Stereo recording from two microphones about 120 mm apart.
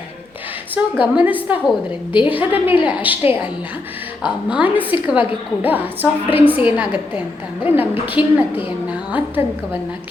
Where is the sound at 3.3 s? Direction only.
15° right (ahead or behind).